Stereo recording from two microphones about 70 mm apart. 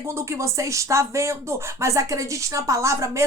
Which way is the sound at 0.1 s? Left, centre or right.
Right.